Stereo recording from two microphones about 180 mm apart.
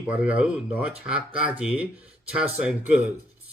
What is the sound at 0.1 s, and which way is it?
Speech, 5° right (ahead or behind).